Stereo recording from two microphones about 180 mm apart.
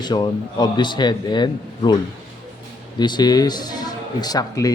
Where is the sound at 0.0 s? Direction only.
25° left (ahead or behind).